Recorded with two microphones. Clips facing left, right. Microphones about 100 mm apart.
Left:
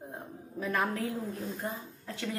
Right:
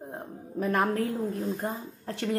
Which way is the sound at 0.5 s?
50° right (ahead or behind).